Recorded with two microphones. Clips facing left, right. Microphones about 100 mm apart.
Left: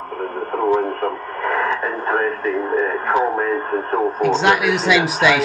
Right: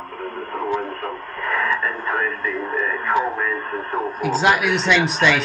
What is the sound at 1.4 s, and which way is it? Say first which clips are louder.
Radio: left 2 dB; 30° left (ahead or behind).